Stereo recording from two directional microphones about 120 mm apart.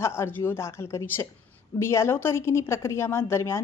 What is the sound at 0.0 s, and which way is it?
A woman's voice, 20° left (ahead or behind).